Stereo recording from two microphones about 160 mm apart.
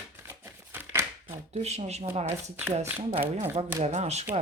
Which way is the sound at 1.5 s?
45° right (ahead or behind).